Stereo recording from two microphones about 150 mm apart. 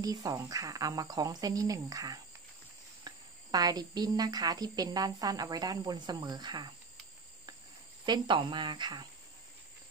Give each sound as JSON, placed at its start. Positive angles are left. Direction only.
{"t": 0.0, "sound": "speech", "side_deg": -25}
{"t": 3.5, "sound": "speech", "side_deg": -25}
{"t": 8.0, "sound": "speech", "side_deg": -30}